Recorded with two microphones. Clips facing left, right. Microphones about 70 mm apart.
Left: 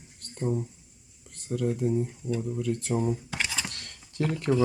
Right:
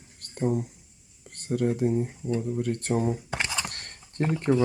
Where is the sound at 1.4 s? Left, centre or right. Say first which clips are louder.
Right 3 dB; right.